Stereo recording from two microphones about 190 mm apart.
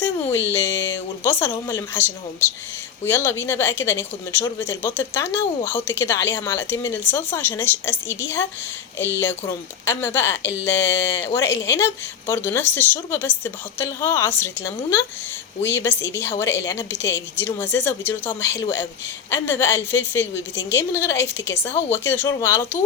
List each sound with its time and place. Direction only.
0.0 s a sound: 10° left (ahead or behind)
1.6 s a woman's voice: 10° left (ahead or behind)
10.7 s speech: 70° left (ahead or behind)
11.6 s a woman's voice: 15° left (ahead or behind)
15.9 s speech: 70° left (ahead or behind)
16.4 s a woman's voice: 15° left (ahead or behind)
17.0 s speech: 70° left (ahead or behind)
17.3 s a woman's voice: 10° left (ahead or behind)
19.3 s a woman's voice: 10° left (ahead or behind)